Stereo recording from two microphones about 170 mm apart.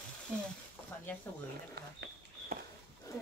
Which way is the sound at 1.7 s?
70° right (ahead or behind).